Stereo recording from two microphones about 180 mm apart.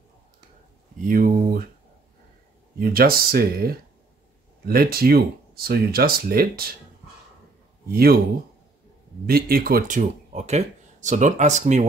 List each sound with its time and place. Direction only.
1.0 s speech: 50° right (ahead or behind)
2.8 s speech: 55° right (ahead or behind)
7.9 s speech: 60° right (ahead or behind)
9.2 s speech: 55° right (ahead or behind); by 11.9 s 40° right (ahead or behind)